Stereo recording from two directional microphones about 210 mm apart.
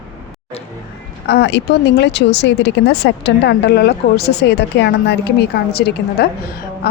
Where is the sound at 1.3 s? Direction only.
55° left (ahead or behind).